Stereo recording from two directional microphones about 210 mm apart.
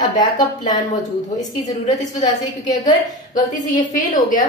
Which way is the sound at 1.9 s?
35° left (ahead or behind).